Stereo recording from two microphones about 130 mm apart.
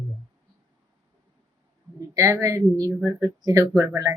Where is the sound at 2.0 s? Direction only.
25° right (ahead or behind).